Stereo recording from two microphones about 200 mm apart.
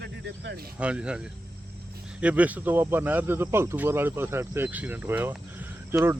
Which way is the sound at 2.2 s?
5° right (ahead or behind).